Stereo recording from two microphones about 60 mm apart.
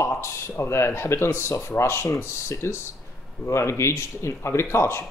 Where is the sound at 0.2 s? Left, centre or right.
Left.